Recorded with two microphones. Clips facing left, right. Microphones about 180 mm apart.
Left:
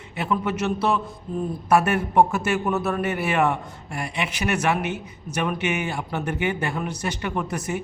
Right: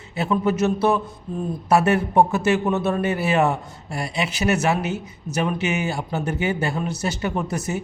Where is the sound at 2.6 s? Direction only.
20° right (ahead or behind).